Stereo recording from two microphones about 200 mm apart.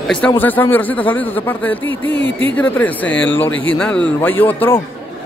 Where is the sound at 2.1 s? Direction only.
65° left (ahead or behind).